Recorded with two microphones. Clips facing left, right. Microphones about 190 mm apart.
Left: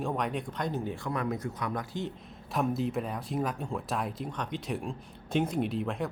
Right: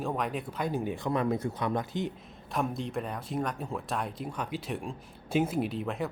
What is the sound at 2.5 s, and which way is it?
Speech, centre (ahead or behind).